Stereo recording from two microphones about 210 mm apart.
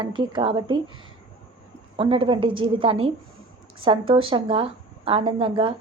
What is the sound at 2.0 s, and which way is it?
A woman's voice, 25° right (ahead or behind).